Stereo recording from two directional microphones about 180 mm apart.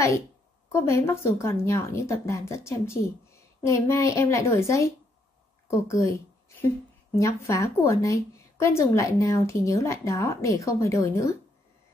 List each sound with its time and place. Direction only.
0.7 s speech: 15° left (ahead or behind)